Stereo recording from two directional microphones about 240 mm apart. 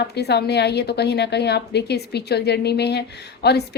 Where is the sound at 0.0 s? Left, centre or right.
Left.